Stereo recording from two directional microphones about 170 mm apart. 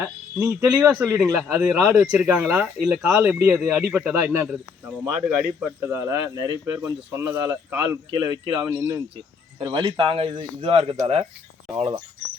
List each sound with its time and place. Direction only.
0.0 s speech: 10° right (ahead or behind)
9.7 s speech: 30° right (ahead or behind)